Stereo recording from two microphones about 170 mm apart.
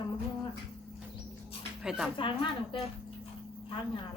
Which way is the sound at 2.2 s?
30° left (ahead or behind).